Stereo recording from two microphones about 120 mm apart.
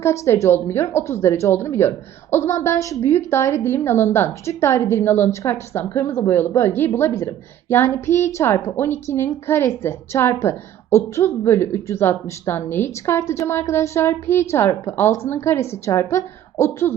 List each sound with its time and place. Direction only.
0.0 s a woman's voice: 25° left (ahead or behind)